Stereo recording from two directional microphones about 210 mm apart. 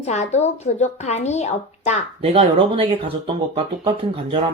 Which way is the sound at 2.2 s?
25° right (ahead or behind).